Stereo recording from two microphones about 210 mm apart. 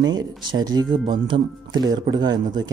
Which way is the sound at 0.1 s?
20° right (ahead or behind).